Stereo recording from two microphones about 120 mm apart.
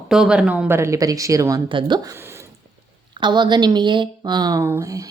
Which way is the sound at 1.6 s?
45° right (ahead or behind).